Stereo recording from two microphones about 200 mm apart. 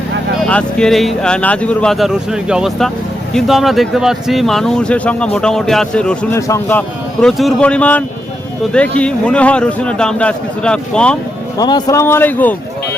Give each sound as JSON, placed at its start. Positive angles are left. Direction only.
{"t": 0.4, "sound": "speech", "side_deg": 5}
{"t": 11.5, "sound": "speech", "side_deg": 20}